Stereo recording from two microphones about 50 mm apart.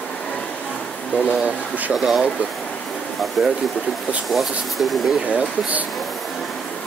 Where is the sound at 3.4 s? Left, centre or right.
Centre.